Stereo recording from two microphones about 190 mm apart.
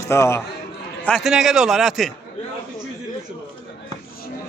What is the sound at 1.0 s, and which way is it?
A man's voice, centre (ahead or behind).